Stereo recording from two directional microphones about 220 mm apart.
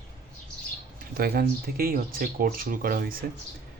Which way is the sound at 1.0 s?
45° right (ahead or behind).